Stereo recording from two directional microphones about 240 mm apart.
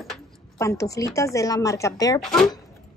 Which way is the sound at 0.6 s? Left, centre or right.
Centre.